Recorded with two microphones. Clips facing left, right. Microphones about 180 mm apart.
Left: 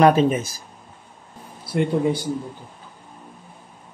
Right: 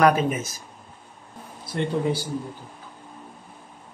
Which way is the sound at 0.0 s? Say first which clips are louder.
Left 4 dB; 25° left (ahead or behind).